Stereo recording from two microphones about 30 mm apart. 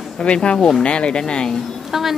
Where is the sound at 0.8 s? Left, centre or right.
Left.